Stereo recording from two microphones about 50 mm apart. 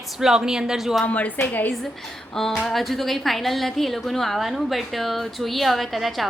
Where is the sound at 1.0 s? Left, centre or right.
Left.